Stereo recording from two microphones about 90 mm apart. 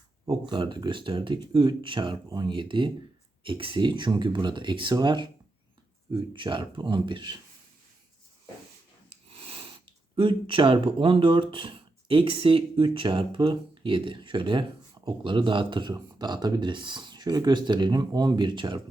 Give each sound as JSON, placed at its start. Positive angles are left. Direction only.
{"t": 0.4, "sound": "speech", "side_deg": -65}
{"t": 9.4, "sound": "sniff", "side_deg": -90}
{"t": 10.2, "sound": "speech", "side_deg": -70}